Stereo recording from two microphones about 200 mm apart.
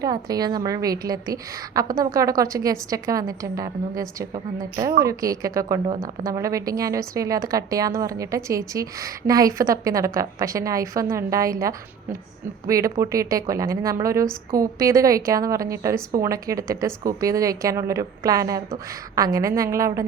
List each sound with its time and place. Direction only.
0.0 s a woman's voice: 20° right (ahead or behind)
5.0 s a woman's voice: 15° right (ahead or behind)